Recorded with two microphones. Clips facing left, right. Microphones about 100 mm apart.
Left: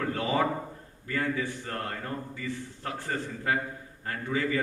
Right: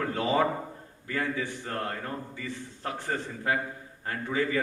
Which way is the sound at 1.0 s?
20° right (ahead or behind).